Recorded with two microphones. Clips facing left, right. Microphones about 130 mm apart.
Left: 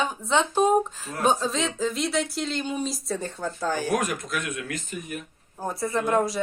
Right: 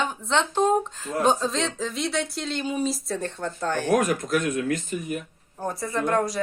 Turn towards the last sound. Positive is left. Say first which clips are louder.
# even
turn(degrees=5)  # may be behind; listen again after turning